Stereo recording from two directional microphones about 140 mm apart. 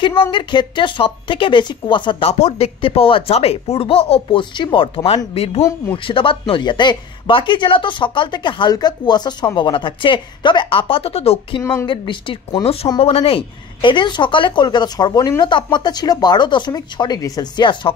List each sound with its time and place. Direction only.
0.0 s speech: 40° left (ahead or behind)
5.6 s speech: 20° left (ahead or behind)
6.0 s speech: 40° left (ahead or behind)